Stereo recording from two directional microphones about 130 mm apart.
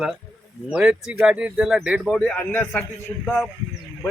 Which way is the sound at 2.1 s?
10° left (ahead or behind).